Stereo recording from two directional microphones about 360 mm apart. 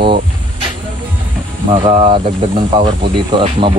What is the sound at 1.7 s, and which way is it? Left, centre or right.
Speech, centre.